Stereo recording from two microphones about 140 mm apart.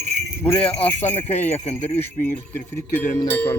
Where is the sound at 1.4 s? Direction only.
50° left (ahead or behind).